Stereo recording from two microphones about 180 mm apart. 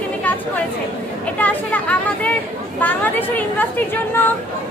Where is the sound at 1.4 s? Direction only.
10° left (ahead or behind).